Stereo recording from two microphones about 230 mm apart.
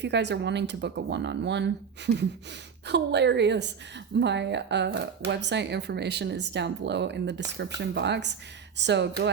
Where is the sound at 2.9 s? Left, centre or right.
Right.